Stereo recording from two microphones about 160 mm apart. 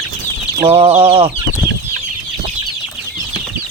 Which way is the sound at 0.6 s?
35° right (ahead or behind).